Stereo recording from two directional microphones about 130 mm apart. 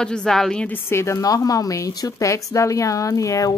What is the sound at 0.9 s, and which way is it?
A woman's voice, 20° left (ahead or behind).